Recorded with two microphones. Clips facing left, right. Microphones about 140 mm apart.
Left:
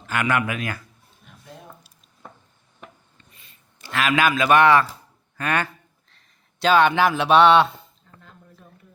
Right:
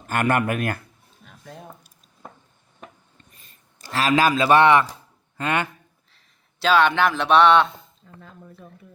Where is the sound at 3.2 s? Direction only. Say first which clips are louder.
Right 1 dB; 45° right (ahead or behind); by 4.9 s 20° right (ahead or behind).